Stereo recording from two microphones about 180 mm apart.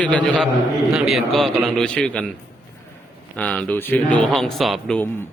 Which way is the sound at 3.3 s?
5° left (ahead or behind).